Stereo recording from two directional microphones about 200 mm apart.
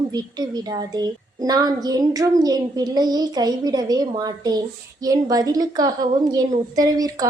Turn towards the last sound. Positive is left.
turn(degrees=-15)  # may be behind; listen again after turning